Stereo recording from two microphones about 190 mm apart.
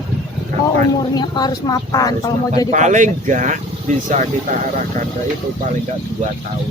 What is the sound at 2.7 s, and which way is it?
Speech, 40° right (ahead or behind).